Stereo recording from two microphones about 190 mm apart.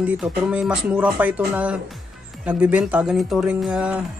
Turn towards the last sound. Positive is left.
turn(degrees=-5)  # may be behind; listen again after turning